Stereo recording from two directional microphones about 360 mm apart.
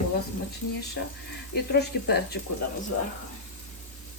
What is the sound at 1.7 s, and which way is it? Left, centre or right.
Speech, left.